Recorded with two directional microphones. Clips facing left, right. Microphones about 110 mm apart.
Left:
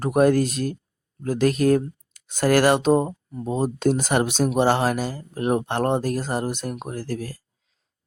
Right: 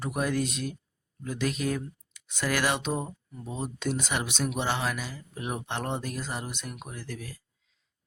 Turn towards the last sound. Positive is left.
turn(degrees=35)  # may be behind; listen again after turning